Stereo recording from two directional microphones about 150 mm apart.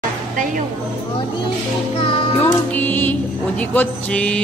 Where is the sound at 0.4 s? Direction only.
60° right (ahead or behind).